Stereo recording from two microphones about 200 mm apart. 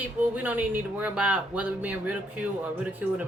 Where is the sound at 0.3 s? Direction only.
10° right (ahead or behind).